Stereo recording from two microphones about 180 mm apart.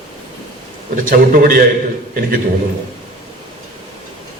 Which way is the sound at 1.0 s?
55° right (ahead or behind).